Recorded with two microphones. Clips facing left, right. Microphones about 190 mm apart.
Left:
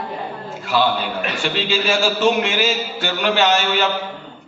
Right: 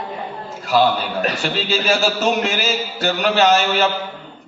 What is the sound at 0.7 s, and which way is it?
A man's voice, 40° right (ahead or behind).